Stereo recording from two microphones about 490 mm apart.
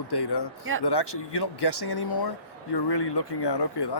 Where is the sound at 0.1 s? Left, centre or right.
Left.